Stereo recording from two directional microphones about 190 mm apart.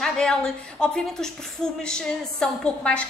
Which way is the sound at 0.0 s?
5° left (ahead or behind).